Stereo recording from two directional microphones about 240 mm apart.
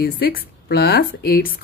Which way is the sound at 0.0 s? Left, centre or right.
Left.